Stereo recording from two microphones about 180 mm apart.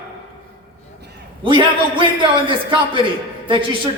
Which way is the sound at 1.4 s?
30° right (ahead or behind).